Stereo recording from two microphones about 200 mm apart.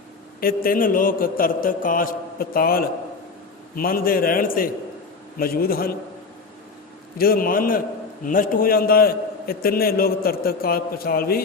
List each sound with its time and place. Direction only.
0.3 s a man's voice: 45° left (ahead or behind)
7.2 s a man's voice: 45° left (ahead or behind)